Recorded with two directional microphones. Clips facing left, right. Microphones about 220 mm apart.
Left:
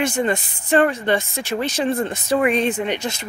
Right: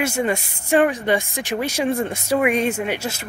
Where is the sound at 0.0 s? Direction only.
10° right (ahead or behind).